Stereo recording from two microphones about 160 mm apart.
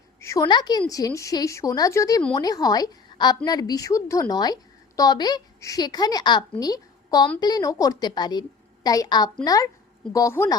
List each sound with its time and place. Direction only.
0.2 s a woman's voice: 20° left (ahead or behind)